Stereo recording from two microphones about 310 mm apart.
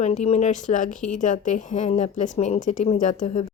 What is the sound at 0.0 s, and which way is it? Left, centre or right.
A woman's voice, left.